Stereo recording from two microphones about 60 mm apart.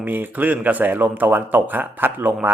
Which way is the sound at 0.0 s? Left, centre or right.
Right.